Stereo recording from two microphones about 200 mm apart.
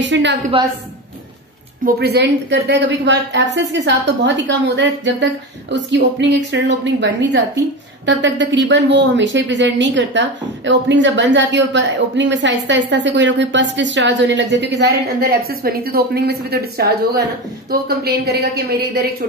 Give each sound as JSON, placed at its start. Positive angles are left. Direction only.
{"t": 0.0, "sound": "speech", "side_deg": -65}
{"t": 1.9, "sound": "a woman's voice", "side_deg": -55}